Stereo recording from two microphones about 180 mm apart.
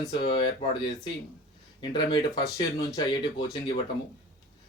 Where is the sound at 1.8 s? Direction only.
25° left (ahead or behind).